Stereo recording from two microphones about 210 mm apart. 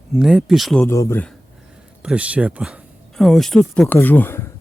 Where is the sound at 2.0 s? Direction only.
5° right (ahead or behind).